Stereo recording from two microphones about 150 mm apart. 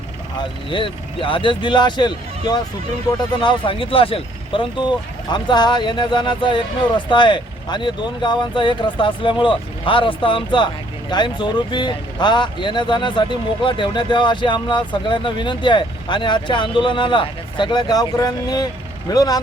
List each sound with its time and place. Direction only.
0.3 s speech: 35° left (ahead or behind)